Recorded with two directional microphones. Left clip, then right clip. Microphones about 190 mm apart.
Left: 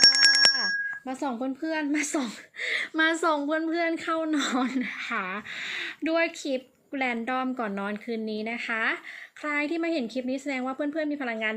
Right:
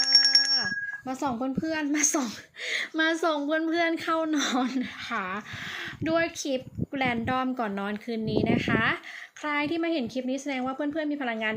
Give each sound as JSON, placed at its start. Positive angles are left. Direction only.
{"t": 0.5, "sound": "speech", "side_deg": -10}